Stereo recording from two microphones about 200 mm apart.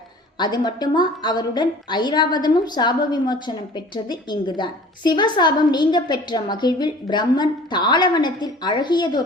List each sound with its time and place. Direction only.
0.3 s a woman's voice: 20° left (ahead or behind)